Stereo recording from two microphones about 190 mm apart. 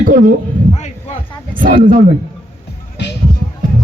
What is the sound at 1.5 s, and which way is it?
Speech, 45° right (ahead or behind).